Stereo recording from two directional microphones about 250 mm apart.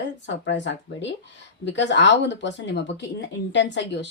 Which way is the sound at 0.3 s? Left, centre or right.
Left.